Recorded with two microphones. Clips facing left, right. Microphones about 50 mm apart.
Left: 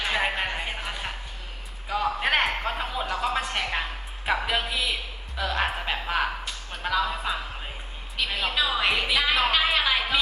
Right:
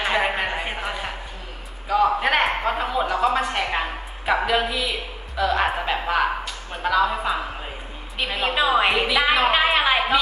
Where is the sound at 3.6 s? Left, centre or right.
Centre.